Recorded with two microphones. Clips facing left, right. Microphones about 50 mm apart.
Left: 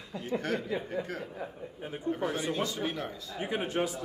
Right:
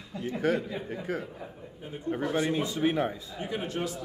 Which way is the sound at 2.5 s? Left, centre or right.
Centre.